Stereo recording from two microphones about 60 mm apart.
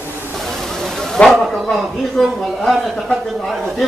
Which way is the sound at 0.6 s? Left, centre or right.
Centre.